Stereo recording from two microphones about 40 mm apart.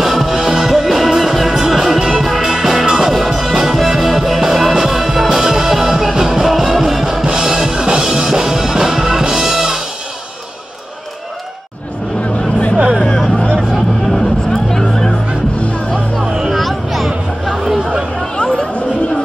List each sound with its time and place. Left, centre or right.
0.0 s music: centre
2.0 s music: centre
12.9 s music: centre
14.1 s music: centre
16.5 s chatter: centre
18.3 s chatter: left